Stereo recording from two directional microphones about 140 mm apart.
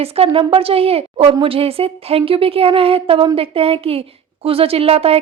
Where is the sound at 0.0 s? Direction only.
45° right (ahead or behind).